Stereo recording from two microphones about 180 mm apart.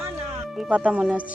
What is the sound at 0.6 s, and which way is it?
Speech, 5° right (ahead or behind).